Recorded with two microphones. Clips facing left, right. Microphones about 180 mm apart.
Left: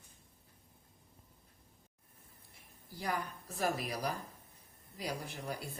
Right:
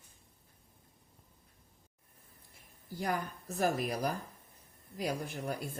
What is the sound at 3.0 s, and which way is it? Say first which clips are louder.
Speech: right 3 dB; 45° right (ahead or behind).